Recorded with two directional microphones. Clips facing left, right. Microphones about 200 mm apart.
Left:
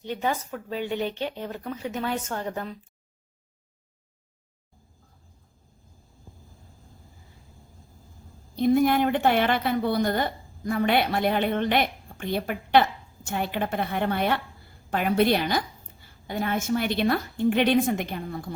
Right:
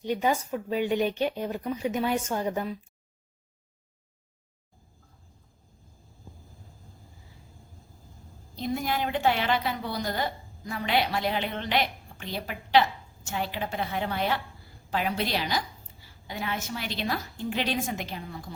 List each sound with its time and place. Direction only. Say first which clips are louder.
0.0 s speech: right 2 dB; 10° right (ahead or behind)
8.5 s a woman's voice: left 9 dB; 55° left (ahead or behind)